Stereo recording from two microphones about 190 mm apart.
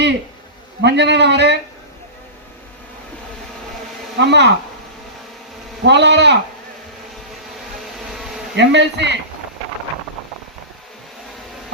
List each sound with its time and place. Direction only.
0.8 s speech: 65° right (ahead or behind)
4.2 s speech: 65° right (ahead or behind)
5.8 s speech: 65° right (ahead or behind)
8.5 s speech: 65° right (ahead or behind)